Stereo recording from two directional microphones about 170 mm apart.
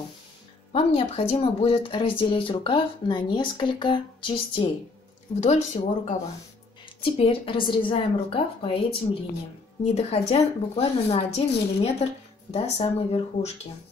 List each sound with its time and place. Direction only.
0.7 s speech: 35° left (ahead or behind)
5.4 s speech: 45° left (ahead or behind)
9.9 s speech: 35° left (ahead or behind)